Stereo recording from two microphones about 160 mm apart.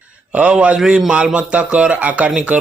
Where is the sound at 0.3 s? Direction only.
5° right (ahead or behind).